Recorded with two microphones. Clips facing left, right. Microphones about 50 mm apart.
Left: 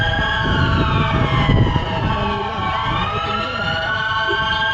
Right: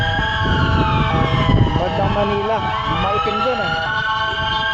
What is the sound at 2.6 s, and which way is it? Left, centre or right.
Emergency vehicle, centre.